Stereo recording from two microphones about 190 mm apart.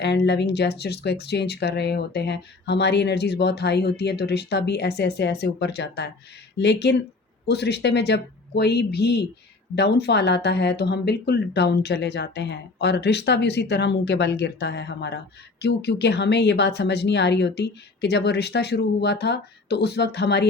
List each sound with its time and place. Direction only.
0.0 s speech: 65° left (ahead or behind)